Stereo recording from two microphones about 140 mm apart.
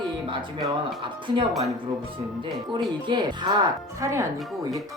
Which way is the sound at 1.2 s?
35° right (ahead or behind).